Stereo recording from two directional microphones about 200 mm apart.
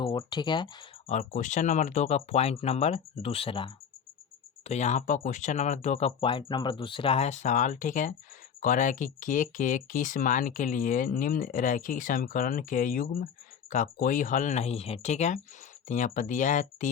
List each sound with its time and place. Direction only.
0.0 s speech: 25° left (ahead or behind)
1.0 s speech: 35° left (ahead or behind)
4.7 s speech: 35° left (ahead or behind)